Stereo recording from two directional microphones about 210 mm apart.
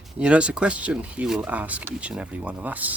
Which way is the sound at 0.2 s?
5° right (ahead or behind).